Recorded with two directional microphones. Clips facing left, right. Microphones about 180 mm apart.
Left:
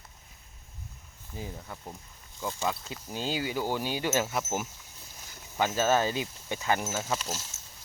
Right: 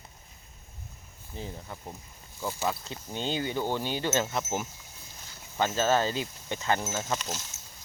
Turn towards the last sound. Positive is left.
turn(degrees=5)  # may be behind; listen again after turning